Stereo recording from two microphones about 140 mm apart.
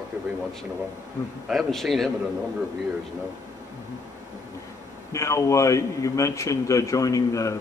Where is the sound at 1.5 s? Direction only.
Centre (ahead or behind).